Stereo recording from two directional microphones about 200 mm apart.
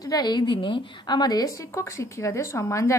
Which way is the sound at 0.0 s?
20° left (ahead or behind).